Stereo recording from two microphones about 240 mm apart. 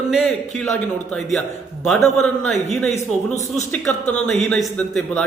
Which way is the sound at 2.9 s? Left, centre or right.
Left.